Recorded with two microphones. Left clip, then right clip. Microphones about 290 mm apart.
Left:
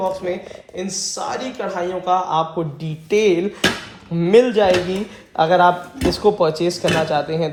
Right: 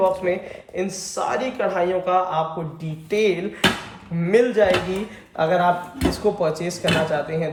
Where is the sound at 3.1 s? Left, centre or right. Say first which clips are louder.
Left 4 dB; centre.